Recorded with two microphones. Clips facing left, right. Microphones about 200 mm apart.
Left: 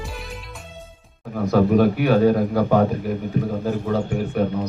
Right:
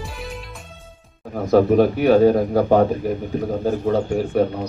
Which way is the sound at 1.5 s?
30° right (ahead or behind).